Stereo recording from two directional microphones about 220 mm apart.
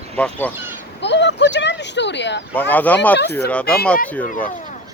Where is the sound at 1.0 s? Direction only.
55° left (ahead or behind).